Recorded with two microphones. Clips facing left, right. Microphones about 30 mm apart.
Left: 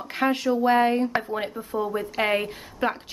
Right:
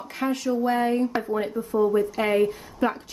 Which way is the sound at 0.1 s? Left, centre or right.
Left.